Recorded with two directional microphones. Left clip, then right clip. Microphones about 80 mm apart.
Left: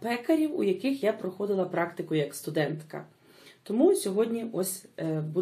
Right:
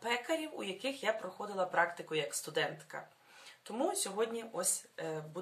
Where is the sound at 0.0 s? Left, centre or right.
Right.